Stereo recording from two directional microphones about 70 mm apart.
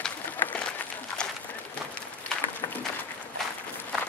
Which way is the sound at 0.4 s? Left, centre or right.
Left.